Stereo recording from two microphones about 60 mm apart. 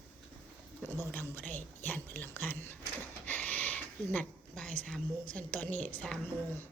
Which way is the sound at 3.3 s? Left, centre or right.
Left.